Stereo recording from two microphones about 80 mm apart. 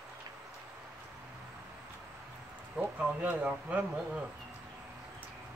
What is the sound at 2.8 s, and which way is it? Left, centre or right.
Speech, right.